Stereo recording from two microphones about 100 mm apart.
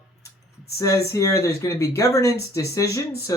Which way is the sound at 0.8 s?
35° left (ahead or behind).